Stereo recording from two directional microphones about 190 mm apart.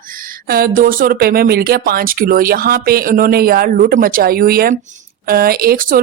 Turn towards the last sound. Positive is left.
turn(degrees=-50)  # may be behind; listen again after turning